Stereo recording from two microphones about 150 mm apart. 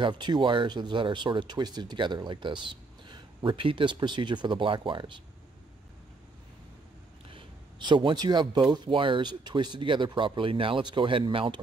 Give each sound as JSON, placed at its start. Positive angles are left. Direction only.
{"t": 0.0, "sound": "speech", "side_deg": -30}
{"t": 7.3, "sound": "speech", "side_deg": -30}